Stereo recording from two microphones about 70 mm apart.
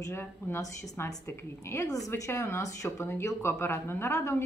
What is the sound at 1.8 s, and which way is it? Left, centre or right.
A woman's voice, left.